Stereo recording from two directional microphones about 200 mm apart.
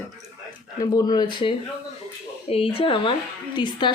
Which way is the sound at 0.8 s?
20° left (ahead or behind).